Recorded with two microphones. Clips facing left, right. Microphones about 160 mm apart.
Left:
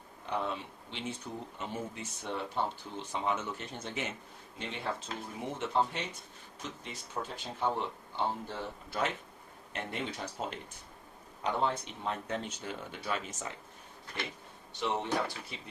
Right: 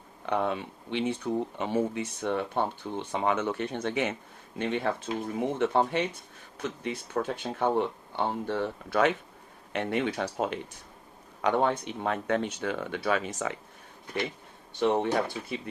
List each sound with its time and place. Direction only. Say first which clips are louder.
0.3 s speech: right 7 dB; 65° right (ahead or behind)
14.8 s speech: right 9 dB; 55° right (ahead or behind)